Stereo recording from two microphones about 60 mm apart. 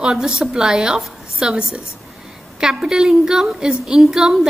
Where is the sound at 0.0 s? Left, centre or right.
Centre.